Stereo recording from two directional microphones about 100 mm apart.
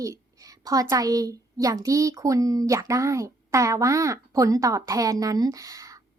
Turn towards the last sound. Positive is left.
turn(degrees=-35)  # may be behind; listen again after turning